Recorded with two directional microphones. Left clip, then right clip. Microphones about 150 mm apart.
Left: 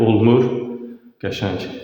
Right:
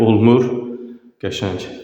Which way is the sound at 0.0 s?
25° right (ahead or behind).